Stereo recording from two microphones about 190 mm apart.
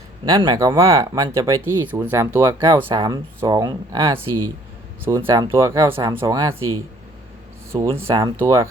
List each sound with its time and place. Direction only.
0.3 s speech: 20° right (ahead or behind)